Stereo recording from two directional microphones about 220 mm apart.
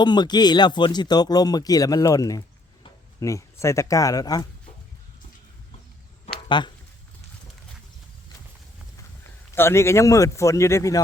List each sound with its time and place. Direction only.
0.0 s speech: 20° left (ahead or behind)
6.5 s speech: 20° left (ahead or behind)
9.6 s speech: 10° left (ahead or behind)